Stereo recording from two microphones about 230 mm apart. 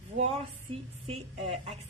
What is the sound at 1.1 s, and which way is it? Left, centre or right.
Speech, right.